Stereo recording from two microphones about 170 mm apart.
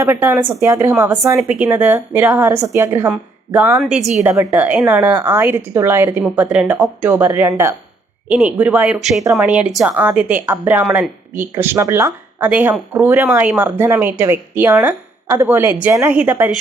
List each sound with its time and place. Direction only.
0.0 s speech: 15° right (ahead or behind)
3.1 s a woman's voice: 5° right (ahead or behind)